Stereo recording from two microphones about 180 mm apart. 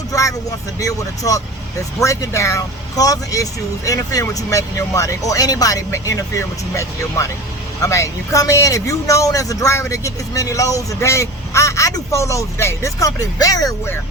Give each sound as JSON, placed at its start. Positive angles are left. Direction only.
{"t": 0.1, "sound": "vehicle", "side_deg": 20}
{"t": 0.8, "sound": "speech", "side_deg": 20}